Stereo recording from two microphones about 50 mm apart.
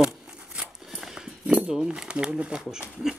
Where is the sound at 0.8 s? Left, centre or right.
Centre.